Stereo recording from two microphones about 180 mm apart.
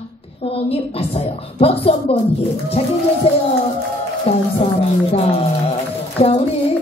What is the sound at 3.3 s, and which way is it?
A woman's voice, 35° left (ahead or behind).